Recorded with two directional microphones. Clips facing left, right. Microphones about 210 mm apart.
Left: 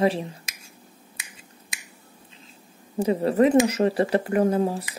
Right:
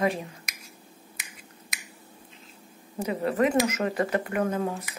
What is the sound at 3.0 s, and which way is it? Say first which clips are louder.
Speech: left 5 dB; 35° left (ahead or behind).